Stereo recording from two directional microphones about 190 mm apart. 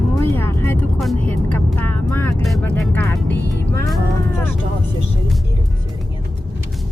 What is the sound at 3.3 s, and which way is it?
Music, 65° left (ahead or behind).